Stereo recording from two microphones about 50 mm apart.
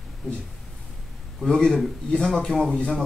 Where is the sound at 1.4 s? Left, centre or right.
Centre.